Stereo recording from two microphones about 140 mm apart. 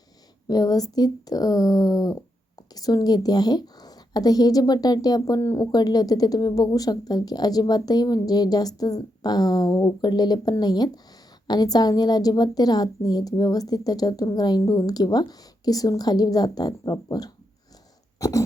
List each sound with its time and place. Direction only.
0.4 s speech: 30° left (ahead or behind)
18.2 s dog: 25° left (ahead or behind)